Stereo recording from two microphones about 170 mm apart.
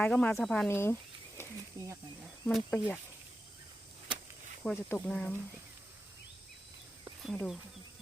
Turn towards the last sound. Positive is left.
turn(degrees=0)  # may be behind; listen again after turning